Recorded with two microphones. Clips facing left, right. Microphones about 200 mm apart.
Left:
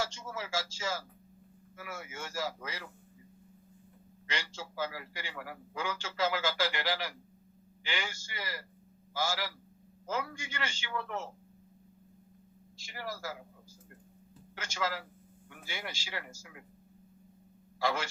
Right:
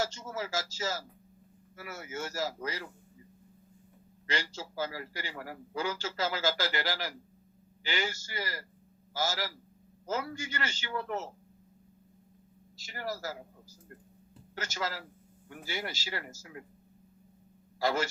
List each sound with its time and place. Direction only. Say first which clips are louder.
0.0 s a man's voice: right 3 dB; 40° right (ahead or behind)
4.3 s a man's voice: right 4 dB; 40° right (ahead or behind)
12.8 s a man's voice: right 3 dB; 40° right (ahead or behind)
17.7 s speech: right 3 dB; 40° right (ahead or behind)